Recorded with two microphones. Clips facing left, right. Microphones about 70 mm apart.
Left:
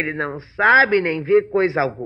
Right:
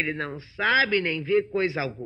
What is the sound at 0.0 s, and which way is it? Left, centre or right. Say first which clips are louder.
A man's voice: left 5 dB; left.